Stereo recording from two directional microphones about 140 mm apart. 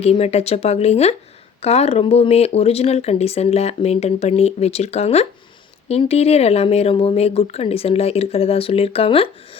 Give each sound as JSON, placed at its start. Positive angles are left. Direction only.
{"t": 0.0, "sound": "speech", "side_deg": 50}